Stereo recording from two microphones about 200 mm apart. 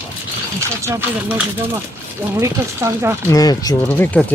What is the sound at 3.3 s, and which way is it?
Speech, 20° left (ahead or behind).